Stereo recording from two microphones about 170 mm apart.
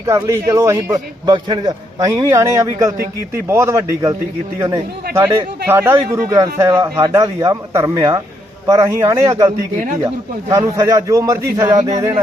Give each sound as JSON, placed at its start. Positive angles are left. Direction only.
{"t": 0.0, "sound": "a man's voice", "side_deg": -20}
{"t": 5.1, "sound": "a man's voice", "side_deg": -15}
{"t": 10.5, "sound": "a man's voice", "side_deg": -20}